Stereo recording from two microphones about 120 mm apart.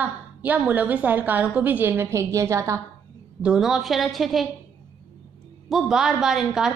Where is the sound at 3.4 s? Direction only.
5° right (ahead or behind).